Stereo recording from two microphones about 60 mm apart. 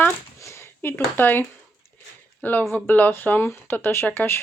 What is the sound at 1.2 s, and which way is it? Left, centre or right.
Speech, left.